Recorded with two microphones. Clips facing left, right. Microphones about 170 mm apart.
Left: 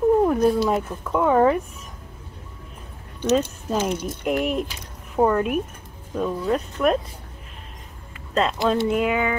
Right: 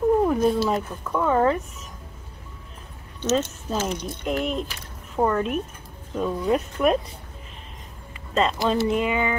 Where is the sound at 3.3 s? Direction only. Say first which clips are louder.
Left 3 dB; 10° left (ahead or behind).